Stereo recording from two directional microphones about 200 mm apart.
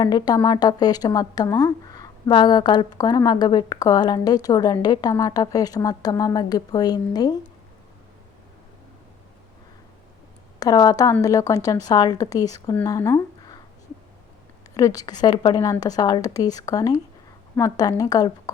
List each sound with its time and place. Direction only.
0.0 s a woman's voice: 20° left (ahead or behind)
10.6 s a woman's voice: 20° left (ahead or behind)
14.8 s a woman's voice: 15° left (ahead or behind)